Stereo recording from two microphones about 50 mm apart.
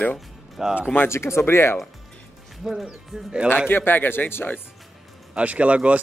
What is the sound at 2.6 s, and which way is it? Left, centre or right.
Speech, centre.